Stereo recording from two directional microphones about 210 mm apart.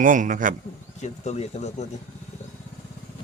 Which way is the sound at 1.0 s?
35° left (ahead or behind).